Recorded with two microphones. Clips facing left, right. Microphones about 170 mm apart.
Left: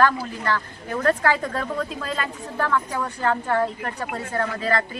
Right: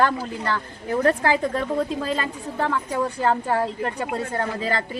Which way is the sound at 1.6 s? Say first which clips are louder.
Right 4 dB; 25° right (ahead or behind).